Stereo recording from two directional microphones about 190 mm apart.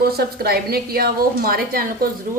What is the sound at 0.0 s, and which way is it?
Speech, 55° right (ahead or behind).